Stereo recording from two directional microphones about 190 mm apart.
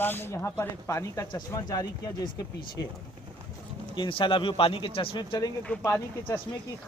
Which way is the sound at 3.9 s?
25° left (ahead or behind).